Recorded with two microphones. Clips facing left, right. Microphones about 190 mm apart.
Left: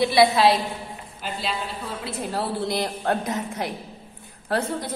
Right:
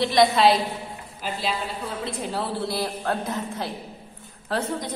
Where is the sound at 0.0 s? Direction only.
10° left (ahead or behind).